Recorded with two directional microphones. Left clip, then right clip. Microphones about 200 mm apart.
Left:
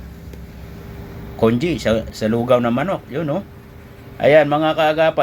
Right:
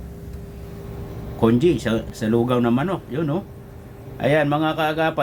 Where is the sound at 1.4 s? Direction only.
10° left (ahead or behind).